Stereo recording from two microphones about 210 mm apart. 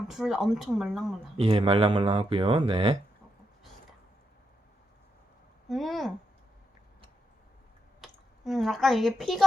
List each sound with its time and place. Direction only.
0.1 s speech: centre (ahead or behind)
1.5 s speech: 25° right (ahead or behind)
5.6 s speech: centre (ahead or behind)
8.0 s speech: centre (ahead or behind)